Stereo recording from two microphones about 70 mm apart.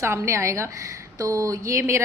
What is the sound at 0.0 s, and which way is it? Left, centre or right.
A woman's voice, right.